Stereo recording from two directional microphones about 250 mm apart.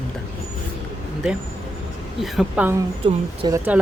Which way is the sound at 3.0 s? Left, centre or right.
Centre.